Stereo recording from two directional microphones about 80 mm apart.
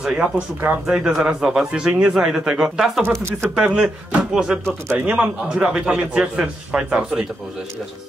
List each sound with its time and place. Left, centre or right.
0.0 s a man's voice: centre
4.8 s a man's voice: right
5.5 s a man's voice: centre